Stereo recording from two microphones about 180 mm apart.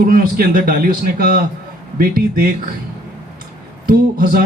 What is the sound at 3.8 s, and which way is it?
Speech, 55° right (ahead or behind).